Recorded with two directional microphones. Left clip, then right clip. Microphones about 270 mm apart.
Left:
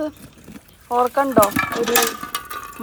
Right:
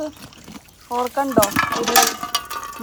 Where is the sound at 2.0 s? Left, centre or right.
Right.